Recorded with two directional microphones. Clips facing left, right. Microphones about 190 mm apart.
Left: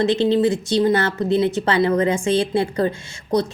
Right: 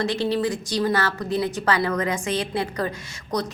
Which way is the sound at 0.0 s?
25° left (ahead or behind).